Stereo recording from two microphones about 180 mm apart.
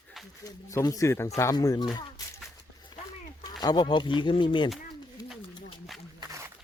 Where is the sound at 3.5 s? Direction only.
25° left (ahead or behind).